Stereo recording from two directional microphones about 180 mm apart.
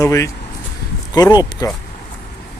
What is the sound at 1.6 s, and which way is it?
Speech, 20° left (ahead or behind).